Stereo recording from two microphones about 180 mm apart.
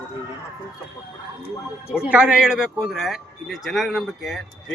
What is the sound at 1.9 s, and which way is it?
Speech, 5° right (ahead or behind).